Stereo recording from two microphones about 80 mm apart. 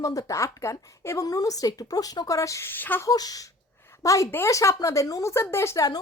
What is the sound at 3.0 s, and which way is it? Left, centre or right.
A woman's voice, left.